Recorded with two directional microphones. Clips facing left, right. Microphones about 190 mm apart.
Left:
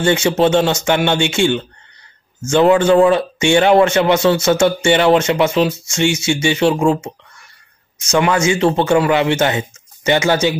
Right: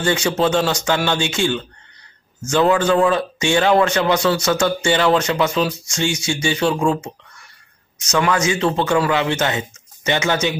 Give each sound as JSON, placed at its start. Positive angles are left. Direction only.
{"t": 0.0, "sound": "speech", "side_deg": 25}
{"t": 8.1, "sound": "speech", "side_deg": 25}